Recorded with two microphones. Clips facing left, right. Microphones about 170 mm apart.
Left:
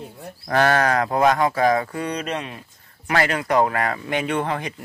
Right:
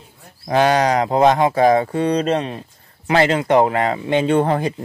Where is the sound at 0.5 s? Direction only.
20° right (ahead or behind).